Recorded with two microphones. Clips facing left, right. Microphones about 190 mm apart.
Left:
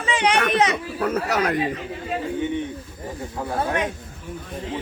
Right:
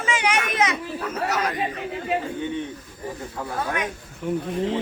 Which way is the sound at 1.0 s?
60° left (ahead or behind).